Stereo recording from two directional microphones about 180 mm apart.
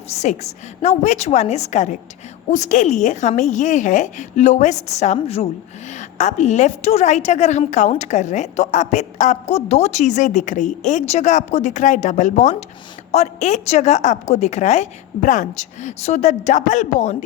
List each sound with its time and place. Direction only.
0.1 s a woman's voice: 40° left (ahead or behind)